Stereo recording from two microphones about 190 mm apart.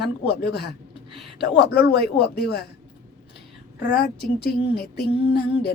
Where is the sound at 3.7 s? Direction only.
55° left (ahead or behind).